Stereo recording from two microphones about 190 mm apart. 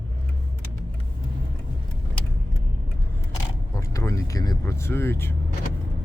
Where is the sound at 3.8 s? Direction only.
15° left (ahead or behind).